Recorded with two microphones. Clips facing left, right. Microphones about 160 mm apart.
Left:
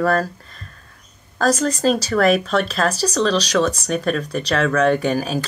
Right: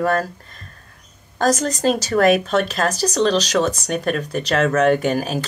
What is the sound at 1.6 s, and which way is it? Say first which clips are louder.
Speech: left 1 dB; 20° right (ahead or behind).